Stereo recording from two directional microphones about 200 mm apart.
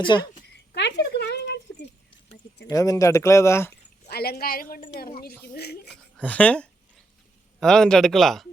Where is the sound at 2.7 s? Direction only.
15° left (ahead or behind).